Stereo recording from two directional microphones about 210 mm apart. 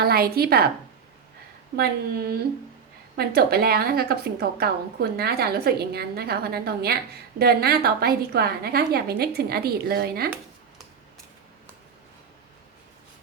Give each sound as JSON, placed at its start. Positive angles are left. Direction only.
{"t": 0.0, "sound": "a woman's voice", "side_deg": -50}
{"t": 1.7, "sound": "a woman's voice", "side_deg": -45}